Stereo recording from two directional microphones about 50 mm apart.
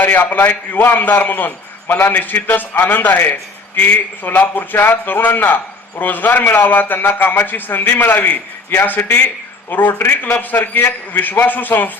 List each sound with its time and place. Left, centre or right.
0.0 s a man's voice: left